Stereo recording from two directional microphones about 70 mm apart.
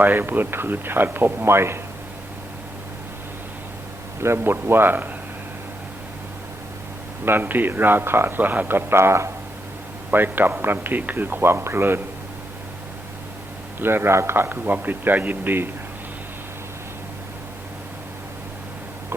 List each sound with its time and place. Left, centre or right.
0.0 s speech: right
4.2 s speech: right
7.3 s speech: right
10.1 s speech: right
13.7 s speech: right